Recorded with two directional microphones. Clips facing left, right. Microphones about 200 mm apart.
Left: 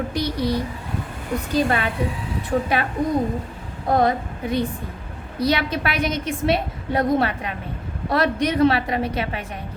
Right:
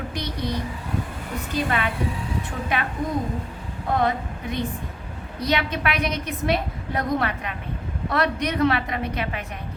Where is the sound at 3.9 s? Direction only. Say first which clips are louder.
Left 4 dB; 35° left (ahead or behind).